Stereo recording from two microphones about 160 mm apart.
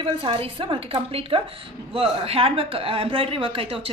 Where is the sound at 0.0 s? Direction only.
35° right (ahead or behind).